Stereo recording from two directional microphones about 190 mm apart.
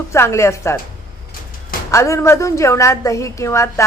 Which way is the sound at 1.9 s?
15° left (ahead or behind).